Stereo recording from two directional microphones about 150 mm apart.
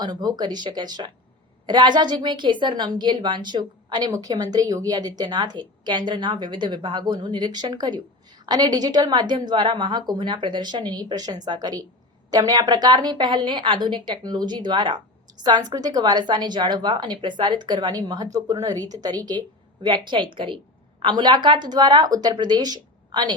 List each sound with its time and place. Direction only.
0.0 s a woman's voice: 25° right (ahead or behind)